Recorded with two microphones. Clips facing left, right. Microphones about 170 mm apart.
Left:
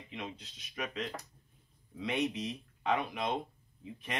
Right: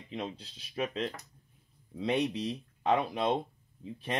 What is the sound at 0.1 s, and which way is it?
Speech, 35° right (ahead or behind).